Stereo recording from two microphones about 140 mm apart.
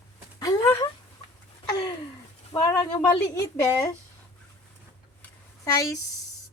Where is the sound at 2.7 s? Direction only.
30° left (ahead or behind).